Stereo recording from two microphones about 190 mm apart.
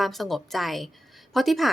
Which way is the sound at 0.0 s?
Centre (ahead or behind).